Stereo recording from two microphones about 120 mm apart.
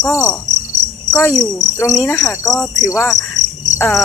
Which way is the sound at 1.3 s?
5° left (ahead or behind).